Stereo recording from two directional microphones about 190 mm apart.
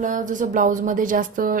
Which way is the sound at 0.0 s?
40° right (ahead or behind).